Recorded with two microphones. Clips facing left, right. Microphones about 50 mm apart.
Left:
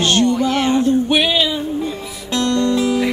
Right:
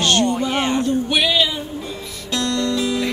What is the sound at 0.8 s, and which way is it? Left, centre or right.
Music, left.